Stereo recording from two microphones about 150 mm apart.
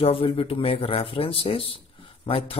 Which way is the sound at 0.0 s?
40° left (ahead or behind).